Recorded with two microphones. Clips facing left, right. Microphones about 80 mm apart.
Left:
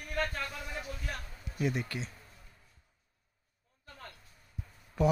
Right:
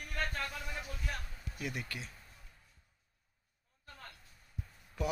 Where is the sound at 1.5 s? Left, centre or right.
Left.